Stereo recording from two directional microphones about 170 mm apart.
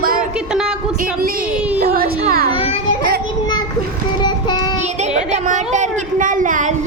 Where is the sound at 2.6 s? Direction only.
30° left (ahead or behind).